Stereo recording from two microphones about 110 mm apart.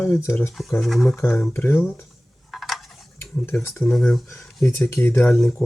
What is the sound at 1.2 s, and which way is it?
Speech, 20° left (ahead or behind).